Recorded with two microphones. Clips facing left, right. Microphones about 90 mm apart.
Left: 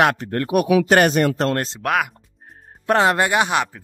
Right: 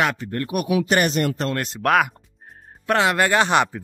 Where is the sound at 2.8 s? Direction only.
35° left (ahead or behind).